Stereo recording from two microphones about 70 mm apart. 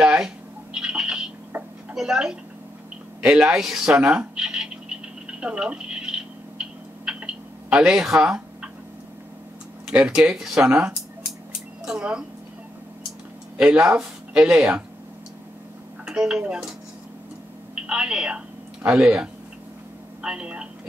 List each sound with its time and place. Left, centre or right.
0.0 s a sound: centre
0.7 s bird: centre
2.0 s speech: centre
5.4 s a sound: centre
7.7 s speech: centre
9.8 s speech: centre
10.7 s speech: right
13.6 s speech: centre
16.1 s speech: centre
17.8 s speech: centre